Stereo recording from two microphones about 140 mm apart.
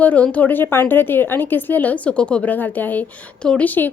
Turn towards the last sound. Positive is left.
turn(degrees=10)  # may be behind; listen again after turning